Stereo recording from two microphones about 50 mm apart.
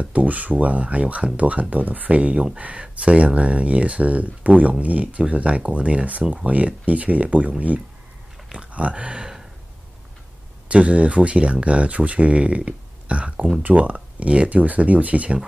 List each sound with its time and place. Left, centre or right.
0.0 s speech: right
8.7 s a sound: right
10.7 s speech: right